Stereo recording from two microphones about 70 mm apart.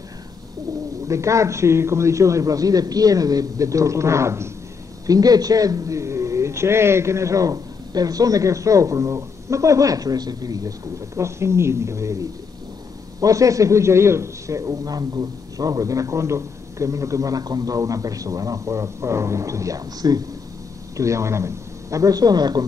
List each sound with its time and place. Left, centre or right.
1.0 s a man's voice: right
5.0 s a man's voice: right
11.1 s a man's voice: right
13.2 s a man's voice: right
20.9 s speech: right